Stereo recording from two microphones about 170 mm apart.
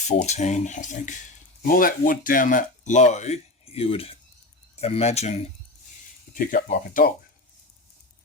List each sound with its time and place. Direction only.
0.1 s speech: 45° left (ahead or behind)
6.3 s speech: 50° left (ahead or behind)